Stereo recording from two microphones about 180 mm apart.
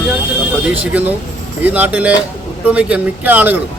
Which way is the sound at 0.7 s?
10° right (ahead or behind).